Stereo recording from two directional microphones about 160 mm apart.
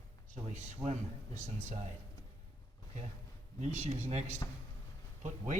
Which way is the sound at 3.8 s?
45° right (ahead or behind).